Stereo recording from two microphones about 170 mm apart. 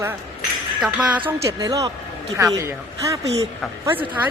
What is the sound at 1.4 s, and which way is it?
A woman's voice, 20° right (ahead or behind).